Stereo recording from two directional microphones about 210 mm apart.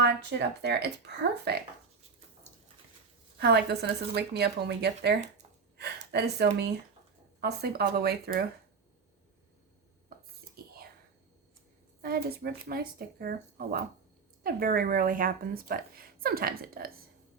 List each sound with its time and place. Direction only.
0.0 s speech: 55° right (ahead or behind)
3.3 s speech: 50° right (ahead or behind)
10.6 s whispering: 45° right (ahead or behind)
12.0 s speech: 45° right (ahead or behind)